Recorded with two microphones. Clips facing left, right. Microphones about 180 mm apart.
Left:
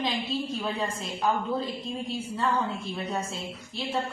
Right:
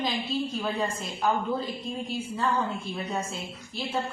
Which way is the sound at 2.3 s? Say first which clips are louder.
Even; centre (ahead or behind).